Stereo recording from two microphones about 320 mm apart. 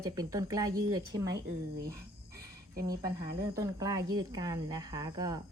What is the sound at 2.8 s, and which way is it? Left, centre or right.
A woman's voice, centre.